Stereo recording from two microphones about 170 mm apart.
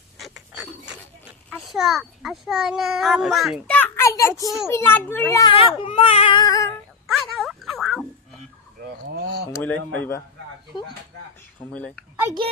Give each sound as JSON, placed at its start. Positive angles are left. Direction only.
{"t": 0.2, "sound": "a sound", "side_deg": 0}
{"t": 1.5, "sound": "a child's voice", "side_deg": -5}
{"t": 3.8, "sound": "a sound", "side_deg": 10}
{"t": 4.4, "sound": "speech", "side_deg": 0}
{"t": 4.7, "sound": "a child's voice", "side_deg": 15}
{"t": 5.5, "sound": "speech", "side_deg": 30}
{"t": 7.1, "sound": "a sound", "side_deg": 0}
{"t": 9.2, "sound": "speech", "side_deg": -70}
{"t": 9.5, "sound": "a child's voice", "side_deg": 10}
{"t": 11.7, "sound": "speech", "side_deg": 5}